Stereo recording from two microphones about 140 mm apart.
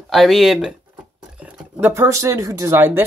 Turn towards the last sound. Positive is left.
turn(degrees=-15)  # may be behind; listen again after turning